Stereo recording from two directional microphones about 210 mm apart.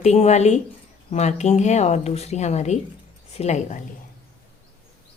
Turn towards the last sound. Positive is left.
turn(degrees=30)  # may be behind; listen again after turning